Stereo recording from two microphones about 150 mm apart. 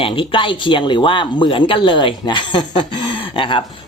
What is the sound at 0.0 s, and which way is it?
Speech, 35° left (ahead or behind).